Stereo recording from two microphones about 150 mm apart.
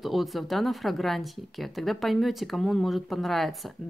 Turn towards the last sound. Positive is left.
turn(degrees=0)  # may be behind; listen again after turning